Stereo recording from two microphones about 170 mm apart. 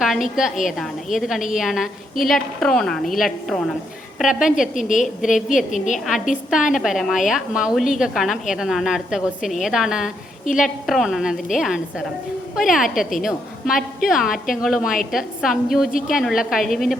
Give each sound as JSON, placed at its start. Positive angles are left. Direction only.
{"t": 0.0, "sound": "a woman's voice", "side_deg": 0}
{"t": 4.7, "sound": "a woman's voice", "side_deg": 50}
{"t": 6.5, "sound": "a woman's voice", "side_deg": -5}